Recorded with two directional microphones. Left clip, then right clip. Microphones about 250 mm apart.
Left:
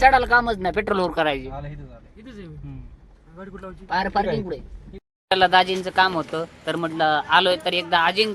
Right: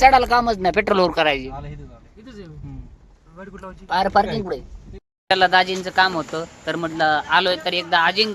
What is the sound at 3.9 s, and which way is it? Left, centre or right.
Speech, centre.